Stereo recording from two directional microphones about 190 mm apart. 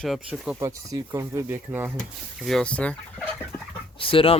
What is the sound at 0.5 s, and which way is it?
Speech, 20° right (ahead or behind).